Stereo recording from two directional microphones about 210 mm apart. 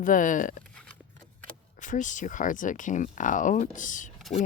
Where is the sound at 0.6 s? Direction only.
5° left (ahead or behind).